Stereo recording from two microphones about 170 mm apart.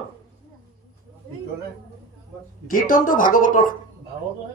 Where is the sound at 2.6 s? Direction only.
55° left (ahead or behind).